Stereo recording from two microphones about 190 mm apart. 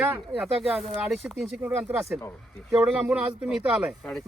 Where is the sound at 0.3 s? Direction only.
Centre (ahead or behind).